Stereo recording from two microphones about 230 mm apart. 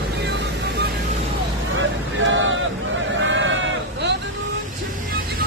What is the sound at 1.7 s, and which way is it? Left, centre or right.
Vehicle, right.